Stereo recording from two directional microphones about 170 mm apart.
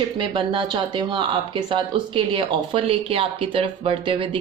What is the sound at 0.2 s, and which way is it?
A woman's voice, 30° right (ahead or behind).